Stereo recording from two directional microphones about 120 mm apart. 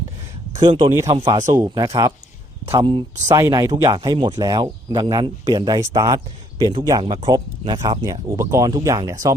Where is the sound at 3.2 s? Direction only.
30° right (ahead or behind).